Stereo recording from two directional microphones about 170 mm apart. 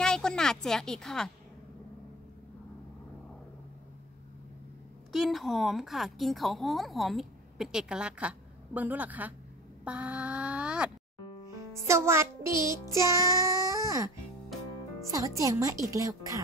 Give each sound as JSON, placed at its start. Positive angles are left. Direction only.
{"t": 0.0, "sound": "a woman's voice", "side_deg": 5}
{"t": 5.1, "sound": "a woman's voice", "side_deg": 0}
{"t": 9.8, "sound": "music", "side_deg": -5}
{"t": 13.0, "sound": "child singing", "side_deg": -20}
{"t": 15.0, "sound": "speech", "side_deg": -20}